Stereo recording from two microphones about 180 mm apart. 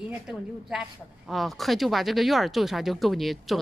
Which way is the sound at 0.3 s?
Centre (ahead or behind).